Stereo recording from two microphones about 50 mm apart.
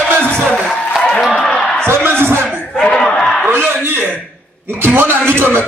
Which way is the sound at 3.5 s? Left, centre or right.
Right.